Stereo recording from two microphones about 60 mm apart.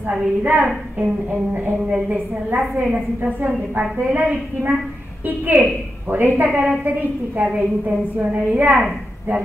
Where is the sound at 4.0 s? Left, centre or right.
Centre.